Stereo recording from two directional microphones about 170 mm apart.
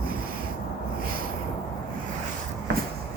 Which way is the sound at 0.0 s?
60° right (ahead or behind).